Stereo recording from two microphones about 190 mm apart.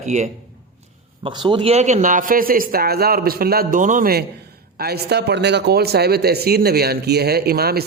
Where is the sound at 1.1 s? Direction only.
25° right (ahead or behind).